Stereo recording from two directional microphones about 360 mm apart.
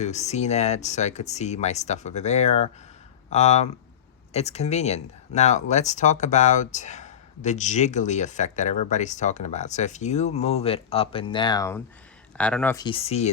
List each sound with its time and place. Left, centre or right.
0.0 s speech: centre